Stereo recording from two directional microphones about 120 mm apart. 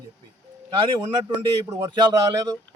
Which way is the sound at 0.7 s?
40° right (ahead or behind).